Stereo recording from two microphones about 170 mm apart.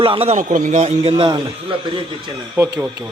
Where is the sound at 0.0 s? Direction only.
35° right (ahead or behind).